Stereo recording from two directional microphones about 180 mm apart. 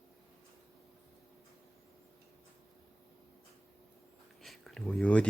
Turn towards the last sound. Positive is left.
turn(degrees=5)  # may be behind; listen again after turning